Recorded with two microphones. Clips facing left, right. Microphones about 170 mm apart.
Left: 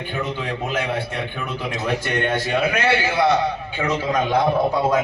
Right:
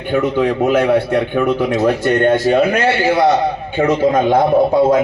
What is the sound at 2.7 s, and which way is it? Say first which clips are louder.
A man's voice: right 6 dB; 50° right (ahead or behind).